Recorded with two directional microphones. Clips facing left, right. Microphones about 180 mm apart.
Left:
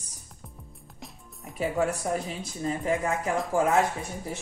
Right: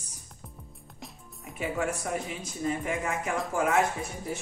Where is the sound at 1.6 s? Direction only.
35° left (ahead or behind).